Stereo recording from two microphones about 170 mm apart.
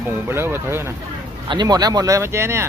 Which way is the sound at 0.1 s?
15° right (ahead or behind).